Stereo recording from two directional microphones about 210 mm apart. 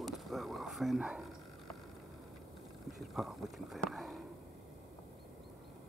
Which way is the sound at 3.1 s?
Centre (ahead or behind).